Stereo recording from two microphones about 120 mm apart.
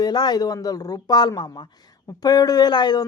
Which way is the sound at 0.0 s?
35° left (ahead or behind).